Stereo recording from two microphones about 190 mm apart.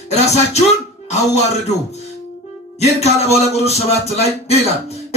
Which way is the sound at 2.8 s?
35° left (ahead or behind).